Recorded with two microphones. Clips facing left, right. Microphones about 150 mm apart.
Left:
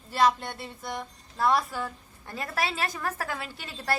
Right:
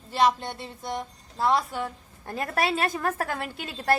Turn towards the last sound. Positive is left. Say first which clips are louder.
# right 5 dB
turn(degrees=-50)  # may be behind; listen again after turning